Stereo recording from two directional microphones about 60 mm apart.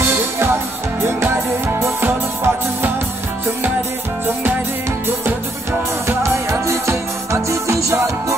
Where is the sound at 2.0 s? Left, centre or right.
Right.